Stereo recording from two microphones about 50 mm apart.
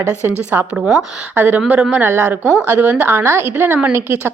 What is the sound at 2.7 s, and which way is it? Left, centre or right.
Speech, right.